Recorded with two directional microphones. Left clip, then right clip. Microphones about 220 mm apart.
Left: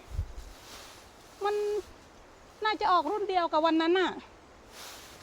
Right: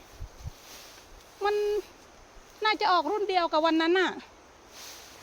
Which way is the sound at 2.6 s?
5° right (ahead or behind).